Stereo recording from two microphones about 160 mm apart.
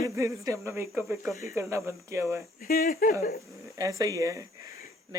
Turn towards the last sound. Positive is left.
turn(degrees=-20)  # may be behind; listen again after turning